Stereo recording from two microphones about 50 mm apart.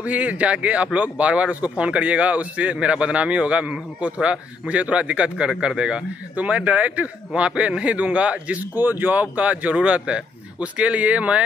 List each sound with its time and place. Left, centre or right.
0.0 s speech: right
8.7 s speech: right